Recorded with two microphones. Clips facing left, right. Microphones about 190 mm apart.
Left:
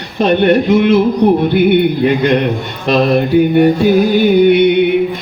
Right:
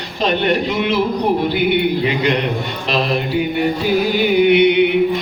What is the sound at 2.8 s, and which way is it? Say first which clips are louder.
Mantra: left 8 dB; 55° left (ahead or behind).